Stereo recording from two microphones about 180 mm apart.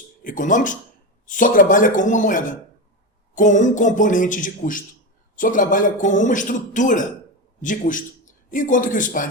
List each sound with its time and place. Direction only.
0.3 s a man's voice: 45° left (ahead or behind)